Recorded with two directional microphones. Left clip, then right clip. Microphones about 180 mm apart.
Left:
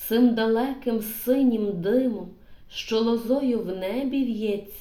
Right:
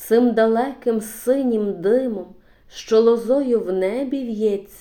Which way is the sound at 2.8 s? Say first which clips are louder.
Right 9 dB; 45° right (ahead or behind).